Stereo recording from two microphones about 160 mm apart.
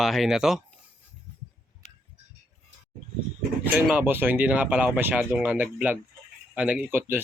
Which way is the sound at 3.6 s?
10° right (ahead or behind).